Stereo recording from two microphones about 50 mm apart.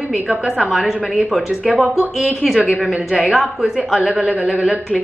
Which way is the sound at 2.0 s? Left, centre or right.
Right.